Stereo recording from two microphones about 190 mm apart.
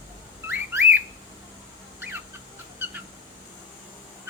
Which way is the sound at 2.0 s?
10° right (ahead or behind).